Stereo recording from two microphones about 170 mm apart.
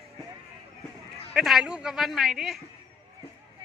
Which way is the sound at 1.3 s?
Centre (ahead or behind).